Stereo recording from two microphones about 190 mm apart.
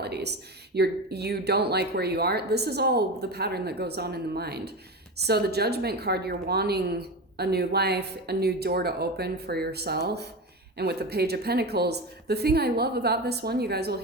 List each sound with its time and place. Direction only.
0.0 s a woman's voice: 60° right (ahead or behind)